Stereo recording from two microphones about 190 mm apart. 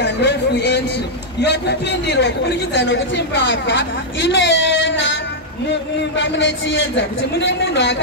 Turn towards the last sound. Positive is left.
turn(degrees=65)  # may be behind; listen again after turning